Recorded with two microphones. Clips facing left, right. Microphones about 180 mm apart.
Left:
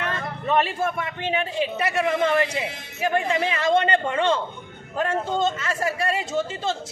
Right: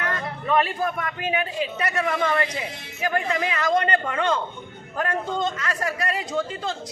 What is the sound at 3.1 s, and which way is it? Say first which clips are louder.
A man's voice: left 2 dB; 25° left (ahead or behind).